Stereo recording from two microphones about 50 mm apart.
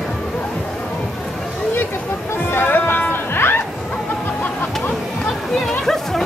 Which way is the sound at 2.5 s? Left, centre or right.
Left.